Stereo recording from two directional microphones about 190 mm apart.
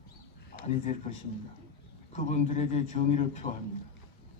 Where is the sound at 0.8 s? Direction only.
40° left (ahead or behind).